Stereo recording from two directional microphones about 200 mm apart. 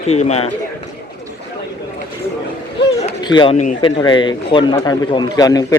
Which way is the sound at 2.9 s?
25° left (ahead or behind).